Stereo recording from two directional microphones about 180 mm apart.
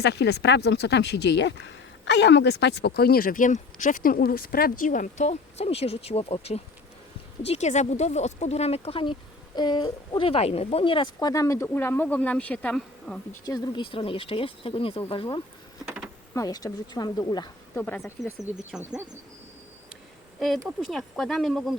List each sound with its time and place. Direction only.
0.0 s speech: 65° left (ahead or behind); by 13.1 s 5° left (ahead or behind)
13.4 s speech: 25° left (ahead or behind)
17.7 s speech: 10° left (ahead or behind)
20.7 s speech: centre (ahead or behind)